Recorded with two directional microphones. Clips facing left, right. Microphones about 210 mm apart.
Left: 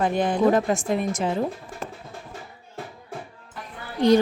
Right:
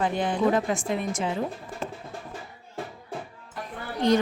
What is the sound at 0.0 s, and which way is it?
A woman's voice, 45° left (ahead or behind).